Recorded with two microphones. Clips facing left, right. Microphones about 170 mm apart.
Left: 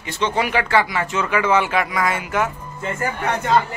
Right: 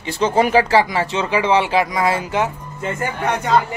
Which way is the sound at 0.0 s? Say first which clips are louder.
Right 5 dB; 35° right (ahead or behind).